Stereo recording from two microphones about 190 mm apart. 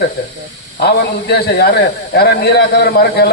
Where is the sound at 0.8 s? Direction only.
60° left (ahead or behind).